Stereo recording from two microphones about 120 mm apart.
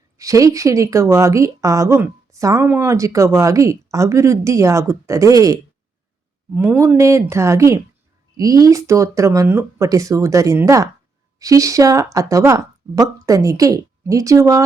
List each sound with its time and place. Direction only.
0.2 s speech: 25° right (ahead or behind)
6.6 s speech: 20° right (ahead or behind)